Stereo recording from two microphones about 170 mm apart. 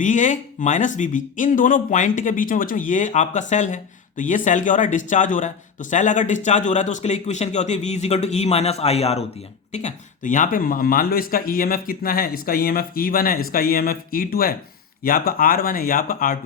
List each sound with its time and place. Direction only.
0.0 s speech: 45° left (ahead or behind)